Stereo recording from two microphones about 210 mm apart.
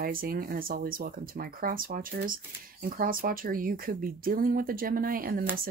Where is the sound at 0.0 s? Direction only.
45° right (ahead or behind).